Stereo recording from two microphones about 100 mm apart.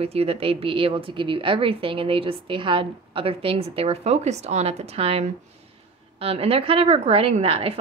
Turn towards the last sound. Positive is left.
turn(degrees=-75)  # may be behind; listen again after turning